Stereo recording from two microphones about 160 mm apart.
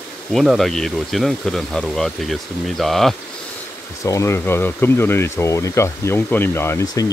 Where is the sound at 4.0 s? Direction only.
20° left (ahead or behind).